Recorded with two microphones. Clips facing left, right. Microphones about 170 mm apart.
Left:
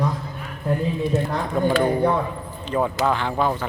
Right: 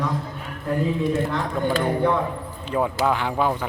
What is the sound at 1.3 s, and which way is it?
Speech, 40° left (ahead or behind).